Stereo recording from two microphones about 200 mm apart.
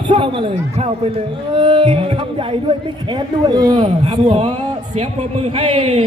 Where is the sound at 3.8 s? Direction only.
35° right (ahead or behind).